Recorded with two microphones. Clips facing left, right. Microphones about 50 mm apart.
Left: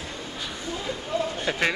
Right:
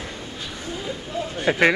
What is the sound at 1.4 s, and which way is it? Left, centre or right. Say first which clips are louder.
Speech: right 11 dB; right.